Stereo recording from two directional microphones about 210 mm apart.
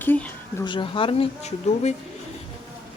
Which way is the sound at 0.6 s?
25° left (ahead or behind).